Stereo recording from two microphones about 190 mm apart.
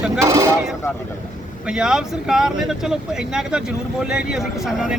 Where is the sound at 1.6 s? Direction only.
5° right (ahead or behind).